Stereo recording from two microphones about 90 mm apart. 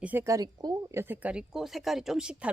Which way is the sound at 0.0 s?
20° right (ahead or behind).